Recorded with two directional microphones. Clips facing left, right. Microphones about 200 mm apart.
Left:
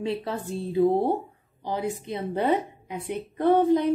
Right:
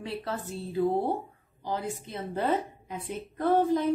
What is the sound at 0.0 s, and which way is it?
A woman's voice, 20° left (ahead or behind).